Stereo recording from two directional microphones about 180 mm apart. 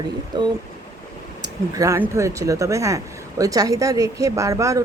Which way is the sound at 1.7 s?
15° right (ahead or behind).